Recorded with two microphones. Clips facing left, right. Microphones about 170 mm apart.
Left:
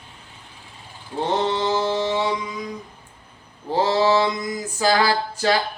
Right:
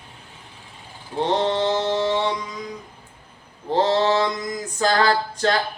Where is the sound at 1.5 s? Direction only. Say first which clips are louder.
Even; 10° left (ahead or behind).